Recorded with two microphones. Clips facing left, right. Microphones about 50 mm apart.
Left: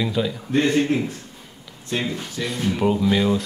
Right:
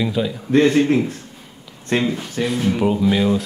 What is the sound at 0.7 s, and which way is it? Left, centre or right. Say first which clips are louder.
Speech: right 4 dB; right.